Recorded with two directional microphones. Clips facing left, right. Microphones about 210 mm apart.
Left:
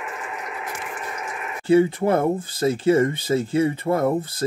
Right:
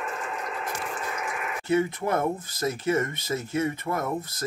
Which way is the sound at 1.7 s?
30° left (ahead or behind).